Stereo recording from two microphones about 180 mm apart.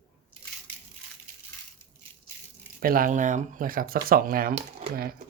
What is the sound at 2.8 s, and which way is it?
Speech, 50° right (ahead or behind).